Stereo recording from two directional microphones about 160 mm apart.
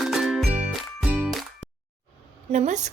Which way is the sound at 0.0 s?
Centre (ahead or behind).